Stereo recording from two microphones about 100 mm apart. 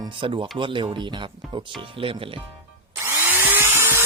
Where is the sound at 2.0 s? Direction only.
65° right (ahead or behind).